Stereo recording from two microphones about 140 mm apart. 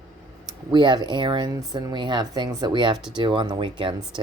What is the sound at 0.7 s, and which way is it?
A woman's voice, 35° right (ahead or behind).